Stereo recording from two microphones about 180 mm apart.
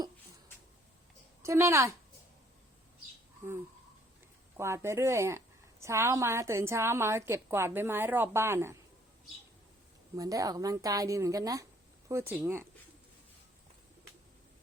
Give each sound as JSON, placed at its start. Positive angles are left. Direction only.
{"t": 1.4, "sound": "speech", "side_deg": -15}
{"t": 4.5, "sound": "a woman's voice", "side_deg": -15}
{"t": 10.2, "sound": "a woman's voice", "side_deg": -20}